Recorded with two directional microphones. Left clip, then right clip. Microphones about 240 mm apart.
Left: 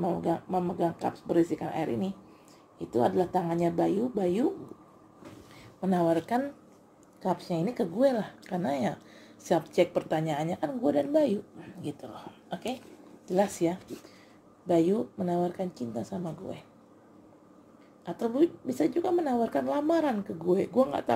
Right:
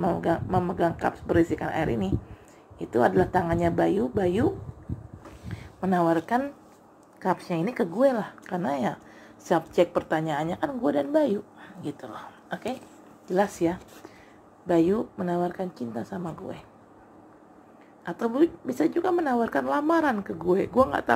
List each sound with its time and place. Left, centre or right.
0.0 s speech: right
0.3 s a woman's voice: centre
5.8 s a woman's voice: centre
18.0 s a woman's voice: centre